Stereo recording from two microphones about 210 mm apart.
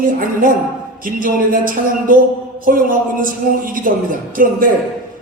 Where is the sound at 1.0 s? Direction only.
40° right (ahead or behind).